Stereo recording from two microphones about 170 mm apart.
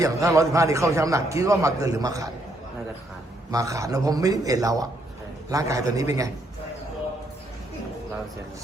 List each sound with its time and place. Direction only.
0.0 s a man's voice: 20° right (ahead or behind)
3.5 s a man's voice: 20° right (ahead or behind)